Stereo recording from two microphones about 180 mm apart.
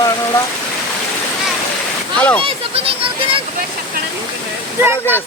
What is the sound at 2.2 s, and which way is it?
Speech, 10° left (ahead or behind).